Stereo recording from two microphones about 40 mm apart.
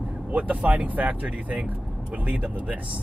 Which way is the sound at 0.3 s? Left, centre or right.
Right.